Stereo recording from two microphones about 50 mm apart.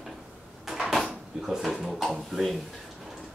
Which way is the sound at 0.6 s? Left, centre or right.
Centre.